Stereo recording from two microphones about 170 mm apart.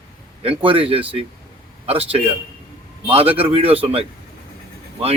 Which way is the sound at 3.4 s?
35° right (ahead or behind).